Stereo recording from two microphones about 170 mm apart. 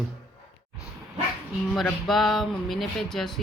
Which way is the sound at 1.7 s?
Centre (ahead or behind).